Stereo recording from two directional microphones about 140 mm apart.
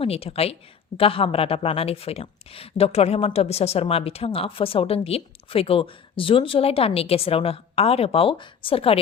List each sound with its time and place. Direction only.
0.0 s speech: 45° left (ahead or behind)